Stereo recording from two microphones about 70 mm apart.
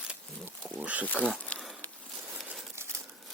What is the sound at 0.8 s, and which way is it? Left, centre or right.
Speech, right.